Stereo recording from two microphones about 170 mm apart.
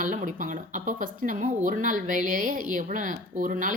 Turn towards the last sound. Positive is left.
turn(degrees=-50)  # may be behind; listen again after turning